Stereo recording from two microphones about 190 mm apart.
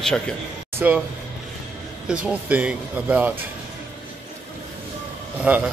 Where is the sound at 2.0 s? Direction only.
5° right (ahead or behind).